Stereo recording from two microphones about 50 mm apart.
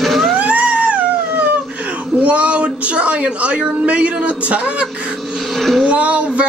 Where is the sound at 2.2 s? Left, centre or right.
Right.